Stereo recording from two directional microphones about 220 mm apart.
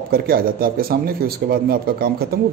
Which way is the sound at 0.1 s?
40° right (ahead or behind).